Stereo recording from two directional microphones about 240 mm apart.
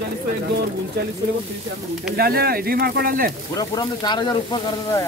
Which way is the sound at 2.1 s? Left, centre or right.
Right.